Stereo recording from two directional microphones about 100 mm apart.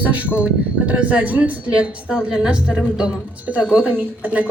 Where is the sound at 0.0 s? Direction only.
15° right (ahead or behind).